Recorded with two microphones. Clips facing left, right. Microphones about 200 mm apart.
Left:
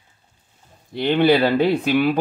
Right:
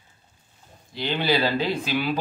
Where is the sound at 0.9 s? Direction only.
60° left (ahead or behind).